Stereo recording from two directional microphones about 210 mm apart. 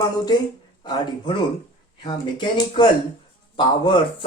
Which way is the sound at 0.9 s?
20° left (ahead or behind).